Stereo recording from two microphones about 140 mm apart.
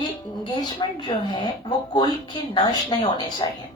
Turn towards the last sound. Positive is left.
turn(degrees=30)  # may be behind; listen again after turning